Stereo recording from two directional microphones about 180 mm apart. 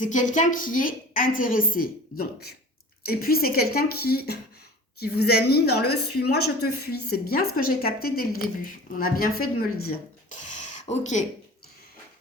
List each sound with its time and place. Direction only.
0.0 s a woman's voice: 45° left (ahead or behind)
10.8 s speech: 40° left (ahead or behind)